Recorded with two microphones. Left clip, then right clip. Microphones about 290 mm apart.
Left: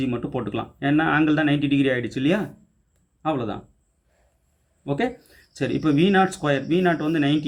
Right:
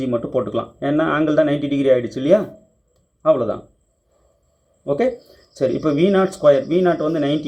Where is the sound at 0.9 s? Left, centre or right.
Centre.